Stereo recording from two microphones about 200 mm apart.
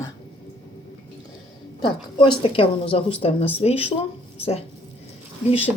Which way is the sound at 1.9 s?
25° left (ahead or behind).